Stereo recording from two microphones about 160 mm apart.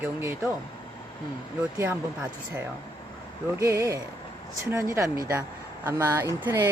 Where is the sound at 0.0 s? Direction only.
15° right (ahead or behind).